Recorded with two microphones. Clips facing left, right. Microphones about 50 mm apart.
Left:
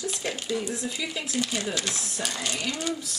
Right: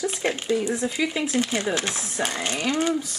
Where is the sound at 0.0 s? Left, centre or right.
Right.